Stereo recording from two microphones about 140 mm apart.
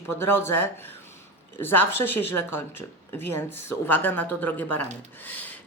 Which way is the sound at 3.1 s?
15° left (ahead or behind).